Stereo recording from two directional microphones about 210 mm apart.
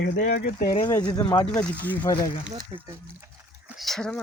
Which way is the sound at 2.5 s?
20° right (ahead or behind).